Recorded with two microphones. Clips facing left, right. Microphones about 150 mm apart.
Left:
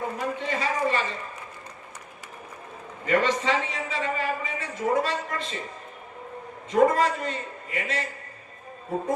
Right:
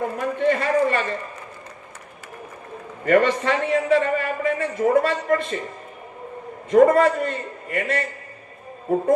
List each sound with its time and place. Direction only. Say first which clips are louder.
0.2 s a sound: right 11 dB; 55° right (ahead or behind)
3.1 s a man's voice: right 5 dB; 55° right (ahead or behind)
6.7 s a man's voice: right 6 dB; 50° right (ahead or behind)